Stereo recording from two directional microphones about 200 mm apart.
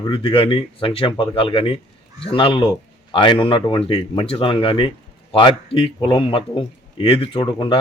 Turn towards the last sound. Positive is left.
turn(degrees=25)  # may be behind; listen again after turning